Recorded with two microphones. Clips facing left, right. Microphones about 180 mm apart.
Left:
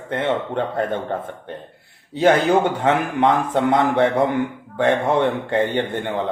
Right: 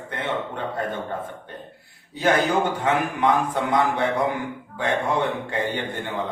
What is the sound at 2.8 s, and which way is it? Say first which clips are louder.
A man's voice: left 4 dB; 60° left (ahead or behind).